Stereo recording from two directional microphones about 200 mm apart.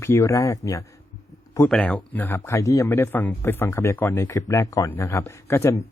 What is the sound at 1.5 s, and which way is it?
A man's voice, 5° left (ahead or behind).